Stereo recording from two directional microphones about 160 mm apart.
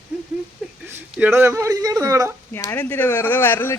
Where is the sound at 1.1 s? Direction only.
10° right (ahead or behind).